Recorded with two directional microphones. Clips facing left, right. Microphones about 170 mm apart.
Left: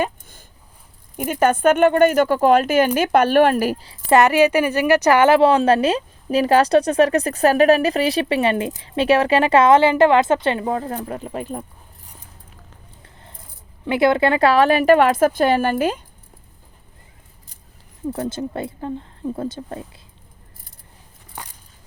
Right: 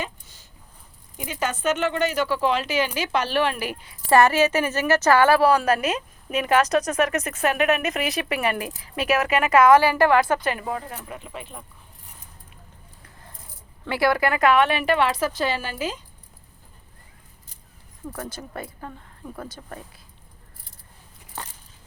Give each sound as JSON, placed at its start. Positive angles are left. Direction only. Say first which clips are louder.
{"t": 0.0, "sound": "a sound", "louder": "left 9 dB", "side_deg": 55}
{"t": 1.1, "sound": "speech", "louder": "left 10 dB", "side_deg": 55}
{"t": 4.1, "sound": "a woman's voice", "louder": "left 4 dB", "side_deg": 15}
{"t": 10.8, "sound": "speech", "louder": "left 9 dB", "side_deg": 40}
{"t": 13.8, "sound": "speech", "louder": "left 5 dB", "side_deg": 20}
{"t": 18.1, "sound": "a woman's voice", "louder": "left 10 dB", "side_deg": 25}
{"t": 21.4, "sound": "a sound", "louder": "even", "side_deg": 15}